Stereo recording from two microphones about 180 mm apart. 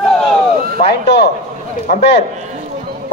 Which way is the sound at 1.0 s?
65° left (ahead or behind).